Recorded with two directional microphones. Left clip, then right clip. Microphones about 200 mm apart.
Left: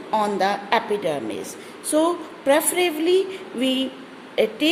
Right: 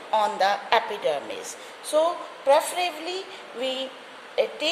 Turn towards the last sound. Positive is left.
turn(degrees=20)  # may be behind; listen again after turning